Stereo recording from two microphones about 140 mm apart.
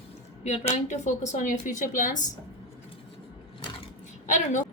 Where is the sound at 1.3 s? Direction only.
65° left (ahead or behind).